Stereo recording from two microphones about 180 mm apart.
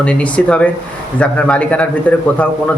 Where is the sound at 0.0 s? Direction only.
5° left (ahead or behind).